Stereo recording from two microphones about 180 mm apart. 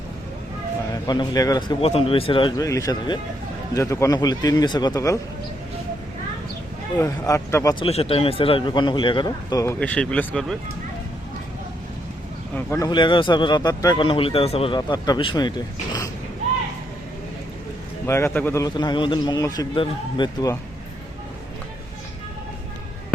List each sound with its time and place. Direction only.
1.0 s speech: 25° left (ahead or behind)
7.0 s speech: 15° left (ahead or behind)
7.8 s speech: 35° left (ahead or behind); by 10.6 s 5° left (ahead or behind)
12.5 s speech: 20° left (ahead or behind)
18.0 s speech: 15° left (ahead or behind)